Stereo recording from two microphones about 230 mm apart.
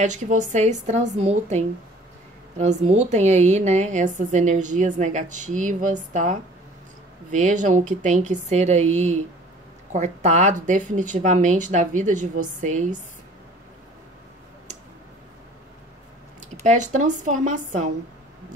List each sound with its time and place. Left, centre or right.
0.0 s a woman's voice: right
16.3 s a woman's voice: right